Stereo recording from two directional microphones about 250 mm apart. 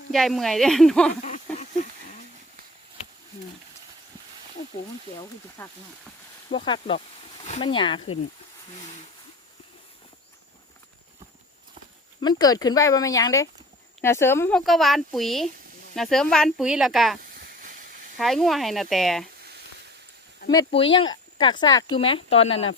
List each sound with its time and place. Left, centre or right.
0.1 s a woman's voice: centre
1.2 s a sound: left
5.6 s speech: centre
6.5 s speech: left
12.2 s a woman's voice: centre
17.3 s a sound: right
18.2 s a woman's voice: centre
20.5 s speech: centre